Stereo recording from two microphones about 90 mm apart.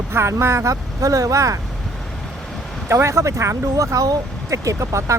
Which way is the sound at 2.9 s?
30° right (ahead or behind).